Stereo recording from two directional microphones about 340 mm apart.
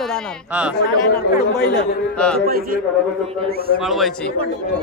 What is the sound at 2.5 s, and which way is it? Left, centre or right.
Speech, right.